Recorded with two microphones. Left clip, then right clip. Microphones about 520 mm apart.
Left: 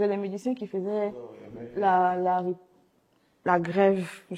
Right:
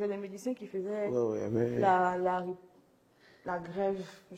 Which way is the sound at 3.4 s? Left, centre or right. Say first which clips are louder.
Left 11 dB; left.